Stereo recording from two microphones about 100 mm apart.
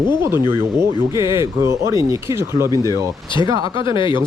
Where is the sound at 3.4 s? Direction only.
40° right (ahead or behind).